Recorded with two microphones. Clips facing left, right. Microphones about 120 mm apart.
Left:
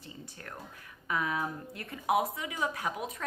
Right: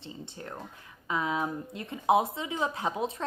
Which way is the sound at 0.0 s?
25° right (ahead or behind).